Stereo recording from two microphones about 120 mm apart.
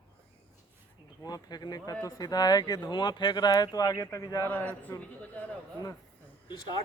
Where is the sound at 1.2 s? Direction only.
35° left (ahead or behind).